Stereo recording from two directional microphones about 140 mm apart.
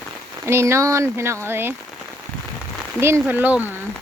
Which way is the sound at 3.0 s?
15° right (ahead or behind).